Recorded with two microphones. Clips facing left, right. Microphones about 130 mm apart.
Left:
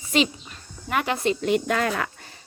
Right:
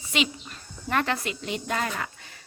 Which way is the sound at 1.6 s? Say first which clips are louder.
Left 5 dB; 90° left.